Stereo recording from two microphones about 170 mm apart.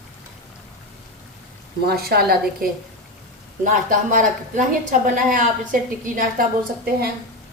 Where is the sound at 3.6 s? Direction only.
50° right (ahead or behind).